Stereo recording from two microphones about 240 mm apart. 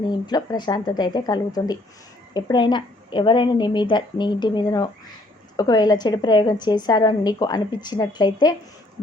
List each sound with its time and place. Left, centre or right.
0.0 s a woman's voice: centre